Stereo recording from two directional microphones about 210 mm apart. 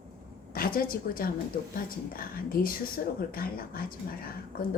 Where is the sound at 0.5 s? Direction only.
45° left (ahead or behind).